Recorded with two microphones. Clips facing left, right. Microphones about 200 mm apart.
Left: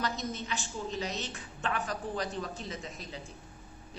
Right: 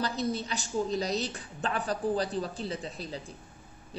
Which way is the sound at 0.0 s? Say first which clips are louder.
Right 4 dB; 35° right (ahead or behind).